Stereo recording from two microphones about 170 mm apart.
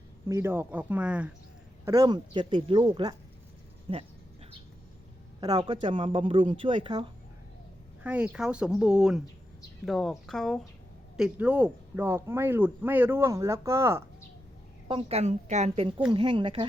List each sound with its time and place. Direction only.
0.3 s speech: 15° right (ahead or behind)
1.8 s a woman's voice: 20° right (ahead or behind)
5.4 s speech: 25° right (ahead or behind)
8.0 s speech: 10° right (ahead or behind)
11.2 s speech: 10° right (ahead or behind)
14.8 s a woman's voice: 35° right (ahead or behind)